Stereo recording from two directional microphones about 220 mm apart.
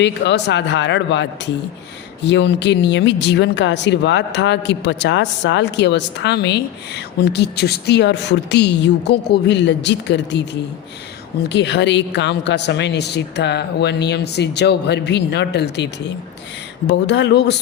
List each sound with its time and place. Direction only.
0.0 s speech: 50° left (ahead or behind)
11.4 s speech: 50° left (ahead or behind)